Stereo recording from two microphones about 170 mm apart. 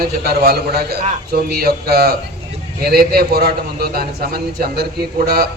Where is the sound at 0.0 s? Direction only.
65° right (ahead or behind).